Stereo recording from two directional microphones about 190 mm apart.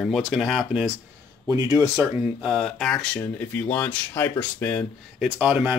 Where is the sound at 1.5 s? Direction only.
20° right (ahead or behind).